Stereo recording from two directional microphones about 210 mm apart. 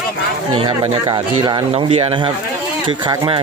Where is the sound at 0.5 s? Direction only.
20° right (ahead or behind).